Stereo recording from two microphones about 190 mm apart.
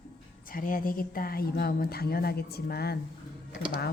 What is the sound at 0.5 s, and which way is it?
A woman's voice, 45° left (ahead or behind).